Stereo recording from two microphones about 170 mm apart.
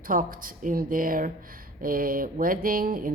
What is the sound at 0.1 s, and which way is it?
A woman's voice, 55° right (ahead or behind).